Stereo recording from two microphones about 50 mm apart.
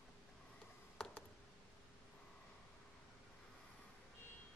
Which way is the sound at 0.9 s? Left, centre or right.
Centre.